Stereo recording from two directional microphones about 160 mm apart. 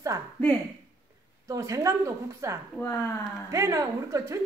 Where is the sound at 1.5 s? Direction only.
20° right (ahead or behind).